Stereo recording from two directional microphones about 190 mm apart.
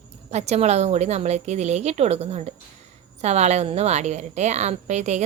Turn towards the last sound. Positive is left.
turn(degrees=-35)  # may be behind; listen again after turning